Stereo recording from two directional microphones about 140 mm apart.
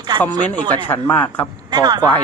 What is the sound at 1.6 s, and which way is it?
Speech, 30° right (ahead or behind).